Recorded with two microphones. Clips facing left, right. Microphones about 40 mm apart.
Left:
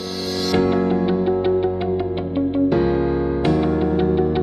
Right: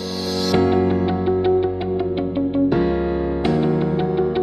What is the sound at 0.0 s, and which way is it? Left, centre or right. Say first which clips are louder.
Music: right 1 dB; centre.